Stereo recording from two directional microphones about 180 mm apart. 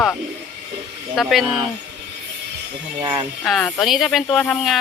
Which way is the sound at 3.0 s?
25° right (ahead or behind).